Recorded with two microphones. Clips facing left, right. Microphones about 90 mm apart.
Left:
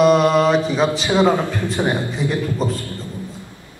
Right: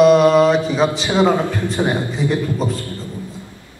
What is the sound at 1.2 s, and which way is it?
Speech, 20° right (ahead or behind).